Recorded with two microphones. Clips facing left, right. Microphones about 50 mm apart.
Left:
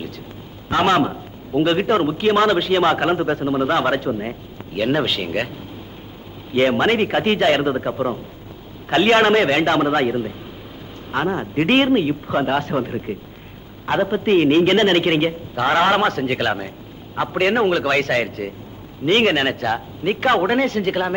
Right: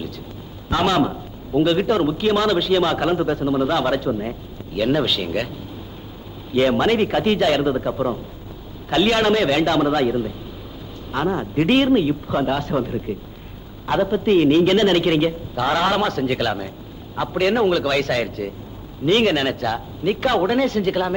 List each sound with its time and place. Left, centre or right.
0.7 s a man's voice: left
6.5 s a man's voice: left